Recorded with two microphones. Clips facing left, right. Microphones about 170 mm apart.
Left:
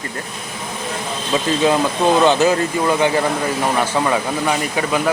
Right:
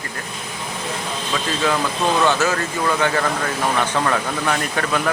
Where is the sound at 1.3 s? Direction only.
25° left (ahead or behind).